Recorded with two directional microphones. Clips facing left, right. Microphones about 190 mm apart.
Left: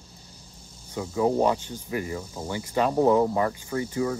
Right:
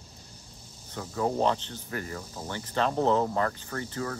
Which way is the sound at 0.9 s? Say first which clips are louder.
Left 5 dB; 10° left (ahead or behind).